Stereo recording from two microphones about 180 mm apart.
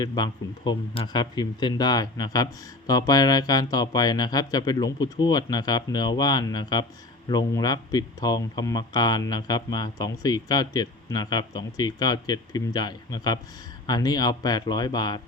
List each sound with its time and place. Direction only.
0.0 s speech: 25° left (ahead or behind)